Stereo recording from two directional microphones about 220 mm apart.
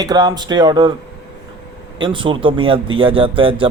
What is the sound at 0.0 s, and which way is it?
Speech, 15° right (ahead or behind).